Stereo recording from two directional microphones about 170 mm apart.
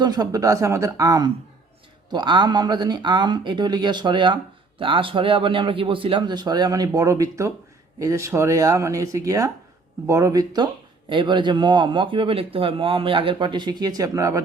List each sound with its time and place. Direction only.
0.0 s speech: 25° right (ahead or behind)